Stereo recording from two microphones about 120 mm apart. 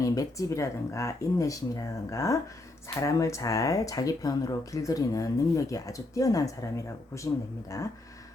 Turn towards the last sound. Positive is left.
turn(degrees=30)  # may be behind; listen again after turning